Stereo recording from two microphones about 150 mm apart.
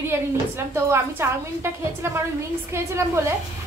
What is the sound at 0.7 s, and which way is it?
A woman's voice, 15° right (ahead or behind).